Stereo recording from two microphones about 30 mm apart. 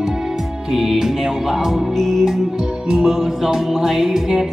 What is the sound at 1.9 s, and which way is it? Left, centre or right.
Music, centre.